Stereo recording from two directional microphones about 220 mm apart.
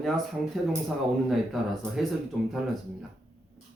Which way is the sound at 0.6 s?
Centre (ahead or behind).